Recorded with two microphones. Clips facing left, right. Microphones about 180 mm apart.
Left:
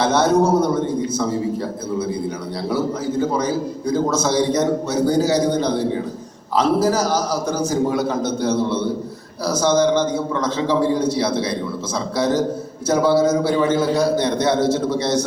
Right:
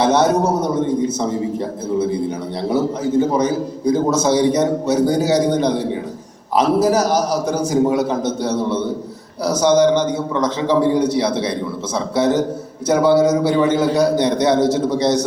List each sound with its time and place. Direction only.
0.0 s a man's voice: 15° right (ahead or behind)
2.6 s a man's voice: 20° right (ahead or behind)